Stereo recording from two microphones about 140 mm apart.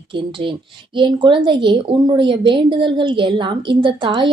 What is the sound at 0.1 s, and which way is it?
A woman's voice, 35° right (ahead or behind).